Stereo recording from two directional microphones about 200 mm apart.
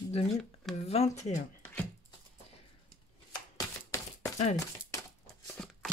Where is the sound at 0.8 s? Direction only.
30° left (ahead or behind).